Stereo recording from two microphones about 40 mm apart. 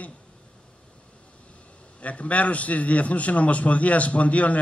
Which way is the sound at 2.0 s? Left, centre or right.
Left.